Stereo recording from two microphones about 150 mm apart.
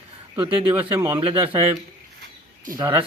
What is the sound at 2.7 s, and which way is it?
Speech, 65° right (ahead or behind).